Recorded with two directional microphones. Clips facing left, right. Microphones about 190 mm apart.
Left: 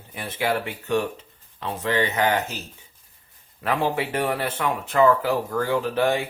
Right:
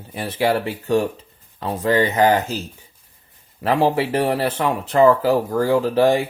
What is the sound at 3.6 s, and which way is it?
Speech, 35° right (ahead or behind).